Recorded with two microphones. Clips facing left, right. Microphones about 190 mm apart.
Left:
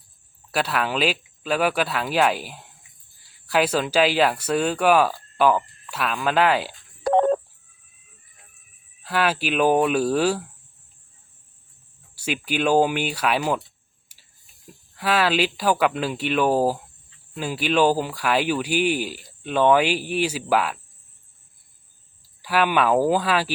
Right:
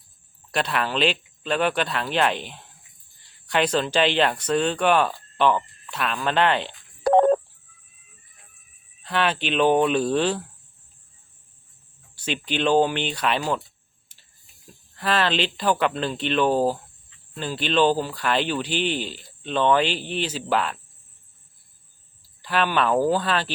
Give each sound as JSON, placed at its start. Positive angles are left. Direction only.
{"t": 0.5, "sound": "speech", "side_deg": 5}
{"t": 7.0, "sound": "telephone dialing", "side_deg": -45}
{"t": 9.0, "sound": "speech", "side_deg": 5}
{"t": 12.1, "sound": "speech", "side_deg": 10}
{"t": 14.1, "sound": "a sound", "side_deg": 10}
{"t": 14.7, "sound": "speech", "side_deg": 5}
{"t": 22.4, "sound": "speech", "side_deg": 10}